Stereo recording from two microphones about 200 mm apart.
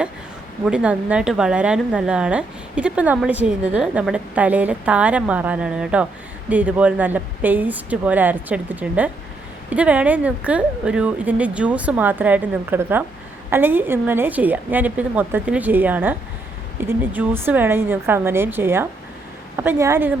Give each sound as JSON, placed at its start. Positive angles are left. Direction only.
{"t": 0.6, "sound": "a woman's voice", "side_deg": -5}